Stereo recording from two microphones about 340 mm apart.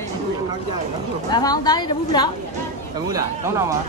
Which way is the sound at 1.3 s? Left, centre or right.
Centre.